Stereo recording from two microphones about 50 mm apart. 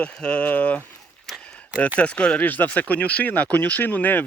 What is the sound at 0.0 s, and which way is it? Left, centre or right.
Speech, left.